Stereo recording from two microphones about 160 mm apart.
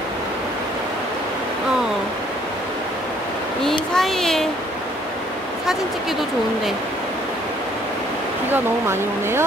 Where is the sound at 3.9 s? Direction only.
Centre (ahead or behind).